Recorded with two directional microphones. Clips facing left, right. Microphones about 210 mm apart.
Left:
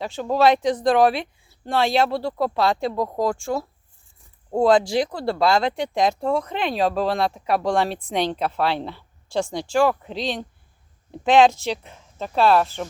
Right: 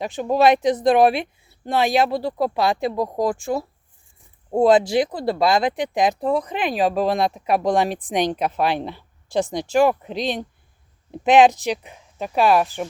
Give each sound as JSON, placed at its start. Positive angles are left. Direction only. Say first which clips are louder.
{"t": 0.0, "sound": "speech", "louder": "right 1 dB", "side_deg": -15}
{"t": 4.6, "sound": "speech", "louder": "right 2 dB", "side_deg": -20}